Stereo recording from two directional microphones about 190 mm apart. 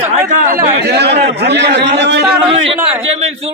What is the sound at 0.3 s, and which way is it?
Speech, 45° right (ahead or behind).